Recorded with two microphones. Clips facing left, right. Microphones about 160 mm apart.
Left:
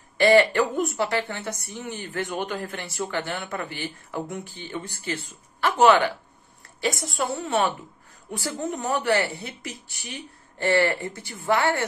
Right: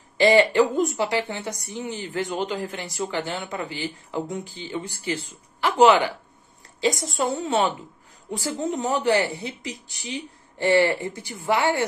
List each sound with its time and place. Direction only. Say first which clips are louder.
0.2 s speech: right 1 dB; 15° right (ahead or behind)